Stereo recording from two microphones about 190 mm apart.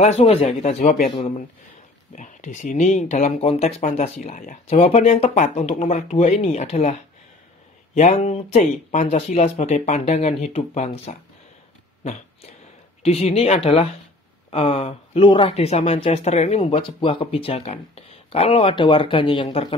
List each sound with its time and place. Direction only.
0.0 s speech: 35° left (ahead or behind)
2.1 s speech: 40° left (ahead or behind)
4.2 s speech: 45° left (ahead or behind)
4.6 s speech: 30° left (ahead or behind)
12.0 s a sound: 35° left (ahead or behind)
13.0 s speech: 30° left (ahead or behind)